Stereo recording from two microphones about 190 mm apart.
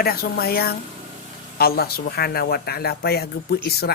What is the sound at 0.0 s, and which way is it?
A woman's voice, 55° left (ahead or behind).